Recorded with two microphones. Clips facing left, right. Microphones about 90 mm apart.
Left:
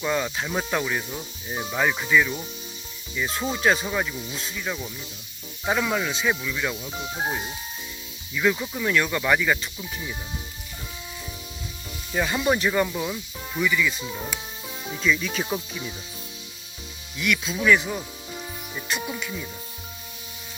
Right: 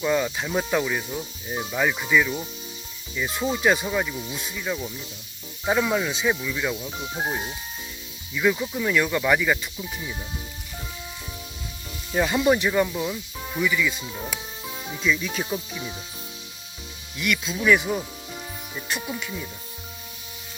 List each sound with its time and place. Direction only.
0.0 s speech: centre (ahead or behind)
3.2 s speech: 15° right (ahead or behind)
3.8 s speech: centre (ahead or behind)
4.6 s speech: centre (ahead or behind)
8.5 s speech: 5° left (ahead or behind)
8.9 s speech: 10° right (ahead or behind)
12.1 s speech: 10° right (ahead or behind)
13.7 s speech: 15° right (ahead or behind)
15.0 s speech: 15° right (ahead or behind)
17.2 s speech: centre (ahead or behind)
18.9 s speech: 5° left (ahead or behind)